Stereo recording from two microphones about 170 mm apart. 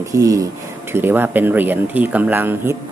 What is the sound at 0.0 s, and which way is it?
Speech, 20° right (ahead or behind).